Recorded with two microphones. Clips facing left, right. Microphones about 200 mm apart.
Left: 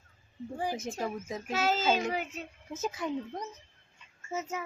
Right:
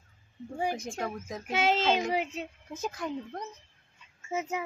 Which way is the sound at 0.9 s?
5° left (ahead or behind).